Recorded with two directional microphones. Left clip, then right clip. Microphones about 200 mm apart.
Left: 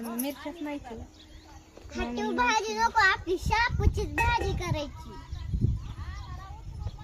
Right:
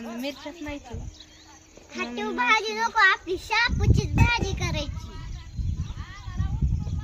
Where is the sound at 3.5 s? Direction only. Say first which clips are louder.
Right 4 dB; 15° left (ahead or behind).